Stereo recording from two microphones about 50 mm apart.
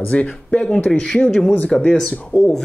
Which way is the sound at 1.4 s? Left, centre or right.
Left.